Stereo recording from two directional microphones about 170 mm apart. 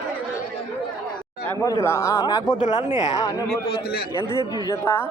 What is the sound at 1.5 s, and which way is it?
Speech, 15° left (ahead or behind).